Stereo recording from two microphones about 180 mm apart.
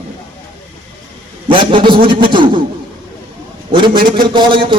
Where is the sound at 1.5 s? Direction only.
30° right (ahead or behind).